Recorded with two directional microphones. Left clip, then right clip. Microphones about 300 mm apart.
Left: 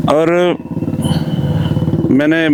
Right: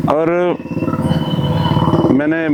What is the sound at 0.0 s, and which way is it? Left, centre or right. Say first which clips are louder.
Speech: left 3 dB; centre.